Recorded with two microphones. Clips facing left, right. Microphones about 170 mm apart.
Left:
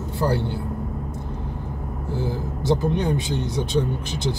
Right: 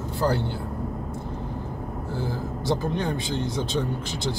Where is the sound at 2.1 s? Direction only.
20° left (ahead or behind).